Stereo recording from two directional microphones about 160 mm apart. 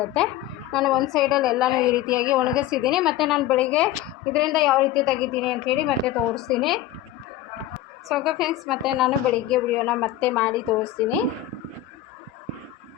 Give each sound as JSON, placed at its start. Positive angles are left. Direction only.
{"t": 0.0, "sound": "a woman's voice", "side_deg": 5}
{"t": 1.9, "sound": "speech", "side_deg": 20}
{"t": 2.3, "sound": "a woman's voice", "side_deg": -5}
{"t": 8.0, "sound": "a woman's voice", "side_deg": 0}